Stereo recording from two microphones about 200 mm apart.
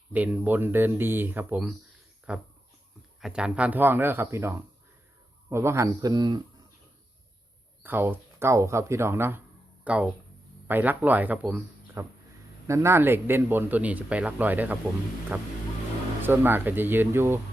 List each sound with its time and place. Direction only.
0.1 s speech: 5° right (ahead or behind)
7.8 s speech: 10° right (ahead or behind)